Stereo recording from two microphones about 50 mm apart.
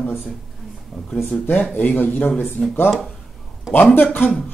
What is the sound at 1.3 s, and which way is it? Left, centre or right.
Speech, centre.